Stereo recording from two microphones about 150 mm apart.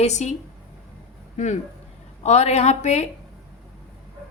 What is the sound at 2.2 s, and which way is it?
Speech, 45° left (ahead or behind).